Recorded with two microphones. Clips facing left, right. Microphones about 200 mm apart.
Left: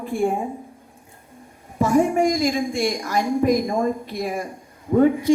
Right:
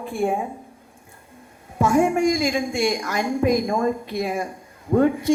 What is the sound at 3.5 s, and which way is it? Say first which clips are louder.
A woman's voice: even; 55° right (ahead or behind).